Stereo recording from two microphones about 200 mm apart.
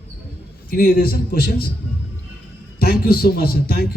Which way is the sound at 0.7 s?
50° left (ahead or behind).